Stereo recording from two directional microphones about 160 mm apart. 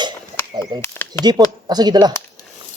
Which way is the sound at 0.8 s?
15° left (ahead or behind).